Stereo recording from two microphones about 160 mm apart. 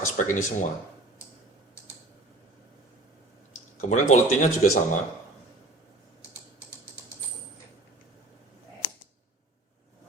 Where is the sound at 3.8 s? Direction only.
50° left (ahead or behind).